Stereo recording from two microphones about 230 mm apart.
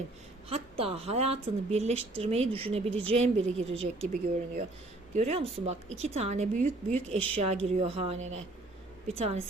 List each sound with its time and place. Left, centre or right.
0.4 s a woman's voice: right